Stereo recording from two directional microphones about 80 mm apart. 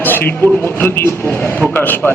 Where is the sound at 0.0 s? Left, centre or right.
Left.